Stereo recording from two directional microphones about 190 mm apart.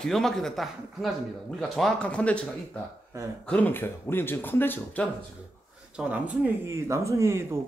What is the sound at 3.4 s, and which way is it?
Speech, 10° left (ahead or behind).